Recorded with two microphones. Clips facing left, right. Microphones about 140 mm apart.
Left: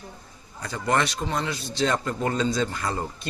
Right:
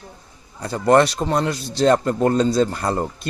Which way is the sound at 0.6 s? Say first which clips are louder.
Right 9 dB; 40° right (ahead or behind).